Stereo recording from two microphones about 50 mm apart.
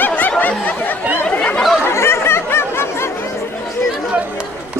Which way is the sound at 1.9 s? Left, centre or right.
Left.